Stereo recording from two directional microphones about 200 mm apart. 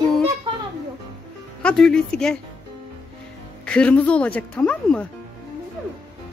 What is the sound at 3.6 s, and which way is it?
A woman's voice, 5° left (ahead or behind).